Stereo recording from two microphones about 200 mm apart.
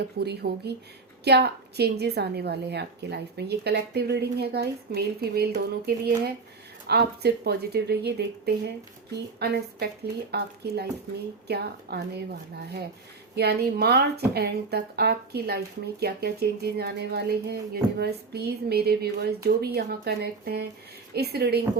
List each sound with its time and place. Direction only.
0.2 s a woman's voice: 55° right (ahead or behind)
13.3 s a woman's voice: 55° right (ahead or behind)